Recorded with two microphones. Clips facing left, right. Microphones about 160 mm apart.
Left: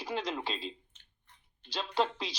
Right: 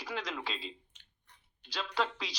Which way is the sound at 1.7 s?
25° left (ahead or behind).